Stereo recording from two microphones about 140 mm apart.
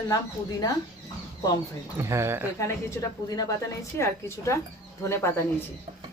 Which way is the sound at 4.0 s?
20° left (ahead or behind).